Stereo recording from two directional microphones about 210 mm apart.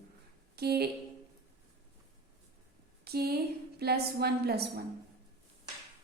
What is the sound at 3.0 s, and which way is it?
A woman's voice, 50° right (ahead or behind).